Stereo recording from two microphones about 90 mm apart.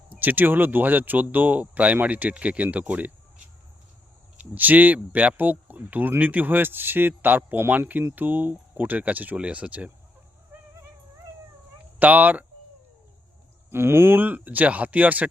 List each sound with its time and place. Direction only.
0.1 s speech: 20° right (ahead or behind)
11.9 s speech: 15° right (ahead or behind)
13.7 s speech: 25° right (ahead or behind)